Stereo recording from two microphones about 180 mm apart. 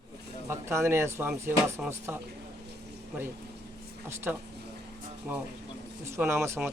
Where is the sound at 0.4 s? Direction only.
15° right (ahead or behind).